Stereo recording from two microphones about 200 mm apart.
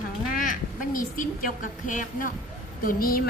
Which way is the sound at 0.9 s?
45° left (ahead or behind).